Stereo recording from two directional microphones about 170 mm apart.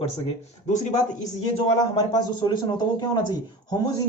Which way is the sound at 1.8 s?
25° left (ahead or behind).